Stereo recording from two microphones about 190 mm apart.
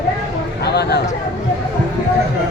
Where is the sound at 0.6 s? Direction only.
60° left (ahead or behind).